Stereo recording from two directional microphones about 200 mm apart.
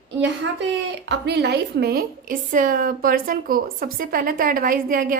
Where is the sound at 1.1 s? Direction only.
55° right (ahead or behind).